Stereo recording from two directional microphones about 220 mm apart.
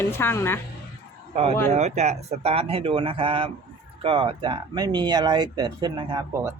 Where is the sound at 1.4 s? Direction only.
25° right (ahead or behind).